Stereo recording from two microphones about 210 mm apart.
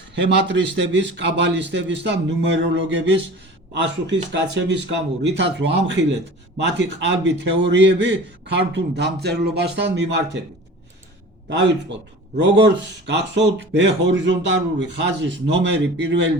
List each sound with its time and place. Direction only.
0.2 s speech: 60° right (ahead or behind)
11.4 s speech: 60° right (ahead or behind)